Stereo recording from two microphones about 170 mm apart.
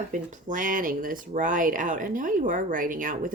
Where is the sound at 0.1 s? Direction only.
50° right (ahead or behind).